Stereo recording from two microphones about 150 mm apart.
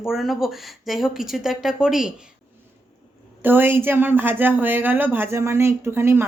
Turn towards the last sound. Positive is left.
turn(degrees=-15)  # may be behind; listen again after turning